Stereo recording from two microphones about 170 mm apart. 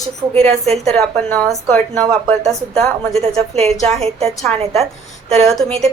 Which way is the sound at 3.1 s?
35° right (ahead or behind).